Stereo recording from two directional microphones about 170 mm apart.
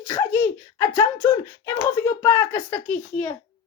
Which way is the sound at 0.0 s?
15° left (ahead or behind).